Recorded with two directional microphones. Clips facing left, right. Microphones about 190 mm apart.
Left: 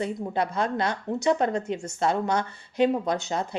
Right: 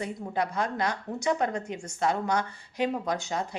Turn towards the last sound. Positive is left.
turn(degrees=25)  # may be behind; listen again after turning